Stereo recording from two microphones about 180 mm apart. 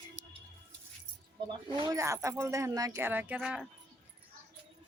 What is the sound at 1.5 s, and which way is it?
Speech, 25° right (ahead or behind).